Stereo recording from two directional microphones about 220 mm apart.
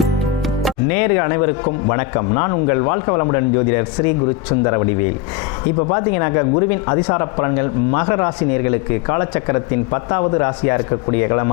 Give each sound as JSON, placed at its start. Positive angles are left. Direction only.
{"t": 0.9, "sound": "a man's voice", "side_deg": 15}
{"t": 5.9, "sound": "a man's voice", "side_deg": 20}